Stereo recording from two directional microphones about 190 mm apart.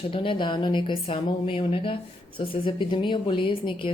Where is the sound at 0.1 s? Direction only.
25° left (ahead or behind).